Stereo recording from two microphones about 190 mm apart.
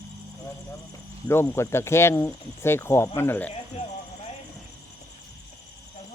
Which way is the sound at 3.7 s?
35° left (ahead or behind).